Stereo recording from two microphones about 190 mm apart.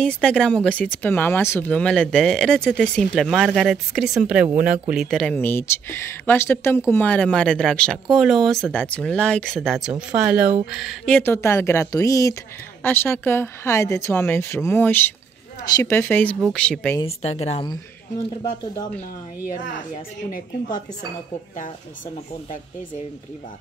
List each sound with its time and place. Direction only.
0.0 s speech: 5° left (ahead or behind)
17.0 s speech: 35° left (ahead or behind)